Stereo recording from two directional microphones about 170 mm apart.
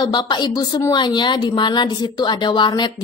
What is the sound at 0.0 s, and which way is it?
A woman's voice, 25° left (ahead or behind).